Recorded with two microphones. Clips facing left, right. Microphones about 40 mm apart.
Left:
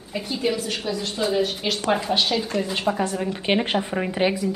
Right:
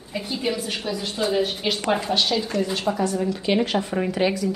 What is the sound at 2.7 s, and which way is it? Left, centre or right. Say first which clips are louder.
A woman's voice: even; left.